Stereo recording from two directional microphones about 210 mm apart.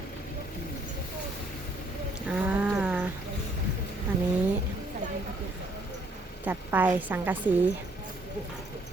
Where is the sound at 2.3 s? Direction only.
5° right (ahead or behind).